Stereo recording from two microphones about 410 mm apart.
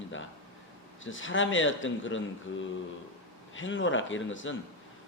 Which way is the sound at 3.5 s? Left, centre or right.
Left.